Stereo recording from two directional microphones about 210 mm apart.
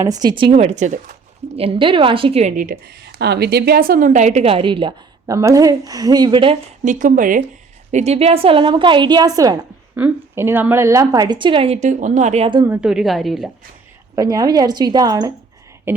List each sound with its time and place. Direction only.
0.0 s a woman's voice: 20° right (ahead or behind); by 1.1 s 35° right (ahead or behind)
1.5 s a woman's voice: 25° right (ahead or behind)
6.8 s a woman's voice: 40° right (ahead or behind)
12.6 s a woman's voice: 5° right (ahead or behind)
14.2 s a woman's voice: 15° right (ahead or behind)
15.9 s a sound: 10° right (ahead or behind)